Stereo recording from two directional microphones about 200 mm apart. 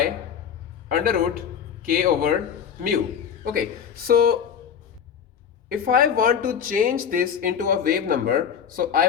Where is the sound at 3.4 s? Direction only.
45° right (ahead or behind).